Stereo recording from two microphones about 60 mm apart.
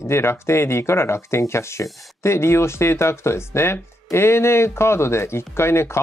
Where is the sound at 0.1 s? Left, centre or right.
Left.